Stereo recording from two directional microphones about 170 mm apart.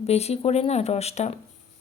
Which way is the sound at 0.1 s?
40° left (ahead or behind).